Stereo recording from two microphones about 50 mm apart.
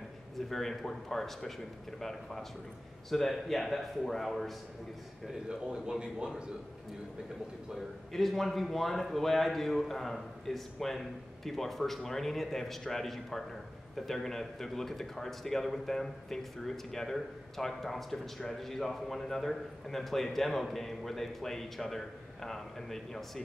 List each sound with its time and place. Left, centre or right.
0.5 s a man's voice: centre
5.5 s a man's voice: centre
8.1 s a man's voice: centre